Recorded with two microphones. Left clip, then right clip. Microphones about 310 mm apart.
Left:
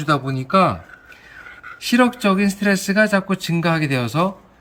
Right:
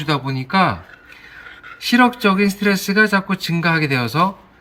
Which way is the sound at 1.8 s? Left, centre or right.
Centre.